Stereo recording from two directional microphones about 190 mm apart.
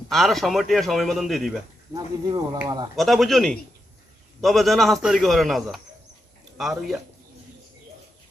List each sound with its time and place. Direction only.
0.1 s a man's voice: centre (ahead or behind)
1.9 s speech: 20° right (ahead or behind)
2.9 s a man's voice: centre (ahead or behind)